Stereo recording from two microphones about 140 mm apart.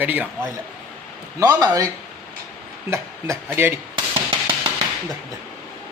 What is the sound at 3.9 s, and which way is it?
Music, 35° right (ahead or behind).